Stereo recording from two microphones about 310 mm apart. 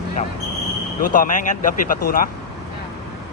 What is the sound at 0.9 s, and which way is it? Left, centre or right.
A man's voice, left.